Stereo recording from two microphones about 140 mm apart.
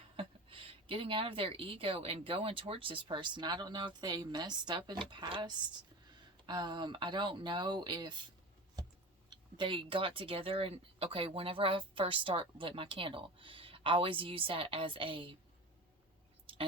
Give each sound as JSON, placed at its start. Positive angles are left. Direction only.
{"t": 0.2, "sound": "speech", "side_deg": -40}
{"t": 9.3, "sound": "speech", "side_deg": -35}